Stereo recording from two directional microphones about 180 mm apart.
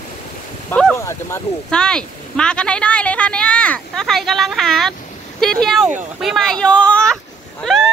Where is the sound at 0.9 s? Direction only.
15° left (ahead or behind).